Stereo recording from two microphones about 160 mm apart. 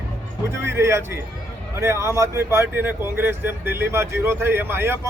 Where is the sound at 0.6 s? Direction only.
15° right (ahead or behind).